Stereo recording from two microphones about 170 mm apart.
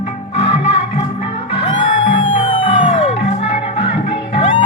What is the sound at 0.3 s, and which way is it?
Music, 35° left (ahead or behind).